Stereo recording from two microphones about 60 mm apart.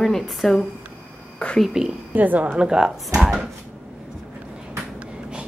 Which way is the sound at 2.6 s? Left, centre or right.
Centre.